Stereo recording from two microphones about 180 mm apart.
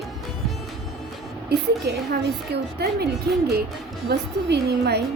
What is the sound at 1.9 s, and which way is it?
A woman's voice, 65° right (ahead or behind).